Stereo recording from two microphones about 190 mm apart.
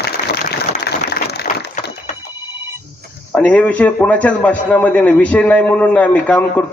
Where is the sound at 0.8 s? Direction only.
55° left (ahead or behind).